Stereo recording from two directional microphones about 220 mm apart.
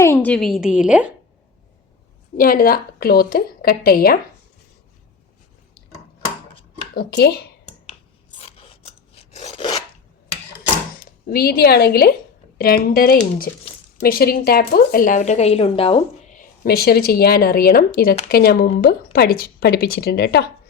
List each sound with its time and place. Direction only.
0.0 s a woman's voice: 10° left (ahead or behind)
2.4 s a woman's voice: 40° left (ahead or behind)
6.9 s a woman's voice: 45° left (ahead or behind)
9.1 s filing: 30° left (ahead or behind)
11.0 s a woman's voice: 45° left (ahead or behind); by 16.0 s 25° left (ahead or behind)
16.4 s a woman's voice: 45° left (ahead or behind)